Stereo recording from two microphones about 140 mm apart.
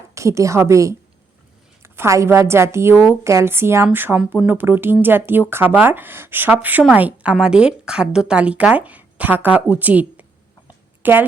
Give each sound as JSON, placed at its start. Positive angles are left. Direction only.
{"t": 0.1, "sound": "a woman's voice", "side_deg": -20}